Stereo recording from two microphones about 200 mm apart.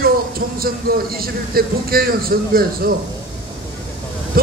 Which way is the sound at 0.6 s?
50° right (ahead or behind).